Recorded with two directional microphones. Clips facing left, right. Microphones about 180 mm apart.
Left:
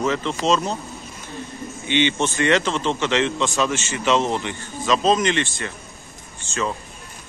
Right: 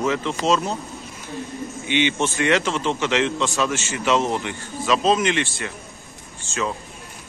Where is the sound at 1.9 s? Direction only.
10° right (ahead or behind).